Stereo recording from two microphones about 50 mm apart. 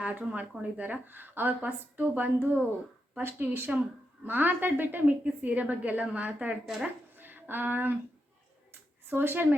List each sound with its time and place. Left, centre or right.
0.0 s a woman's voice: right
7.2 s a sound: right
9.0 s speech: right